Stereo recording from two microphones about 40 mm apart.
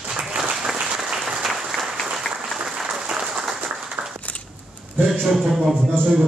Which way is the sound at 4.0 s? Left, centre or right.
Right.